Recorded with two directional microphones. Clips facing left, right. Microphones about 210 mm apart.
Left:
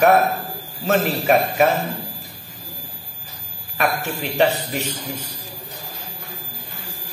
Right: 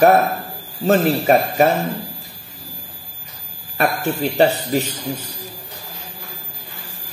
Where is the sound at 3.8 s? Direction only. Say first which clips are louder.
Right 4 dB; 35° right (ahead or behind).